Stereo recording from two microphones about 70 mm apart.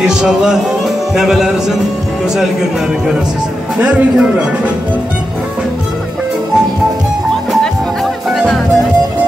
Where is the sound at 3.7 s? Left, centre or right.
Centre.